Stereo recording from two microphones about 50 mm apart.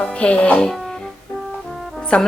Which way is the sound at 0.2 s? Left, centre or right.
Left.